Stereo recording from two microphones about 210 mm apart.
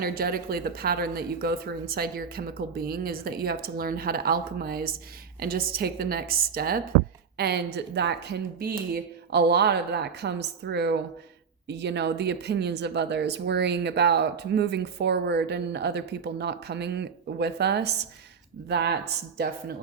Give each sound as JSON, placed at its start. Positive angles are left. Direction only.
{"t": 0.0, "sound": "speech", "side_deg": -45}